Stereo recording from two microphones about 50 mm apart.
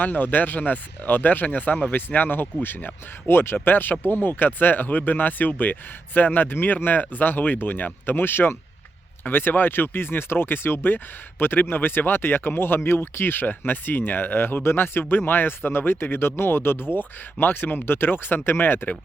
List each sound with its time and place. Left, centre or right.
0.0 s speech: left